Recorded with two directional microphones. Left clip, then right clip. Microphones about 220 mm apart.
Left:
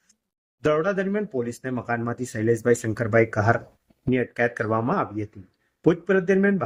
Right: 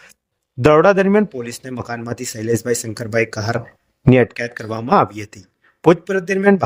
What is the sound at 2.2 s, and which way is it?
Speech, 50° right (ahead or behind).